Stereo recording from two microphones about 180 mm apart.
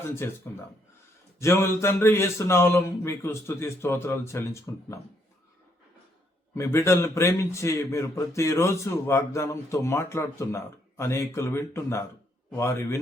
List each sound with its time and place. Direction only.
0.0 s a man's voice: 15° left (ahead or behind)
1.4 s a man's voice: 15° left (ahead or behind)
6.5 s a man's voice: 15° left (ahead or behind)